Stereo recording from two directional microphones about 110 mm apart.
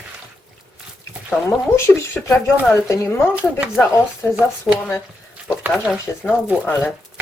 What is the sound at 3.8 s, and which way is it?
Speech, 25° left (ahead or behind).